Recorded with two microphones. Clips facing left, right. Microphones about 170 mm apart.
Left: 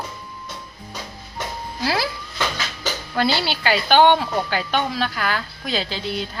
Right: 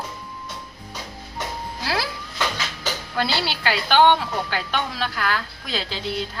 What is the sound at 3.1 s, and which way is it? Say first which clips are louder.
A woman's voice: left 4 dB; centre (ahead or behind).